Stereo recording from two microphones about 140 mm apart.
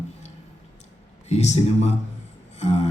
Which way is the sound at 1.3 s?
55° left (ahead or behind).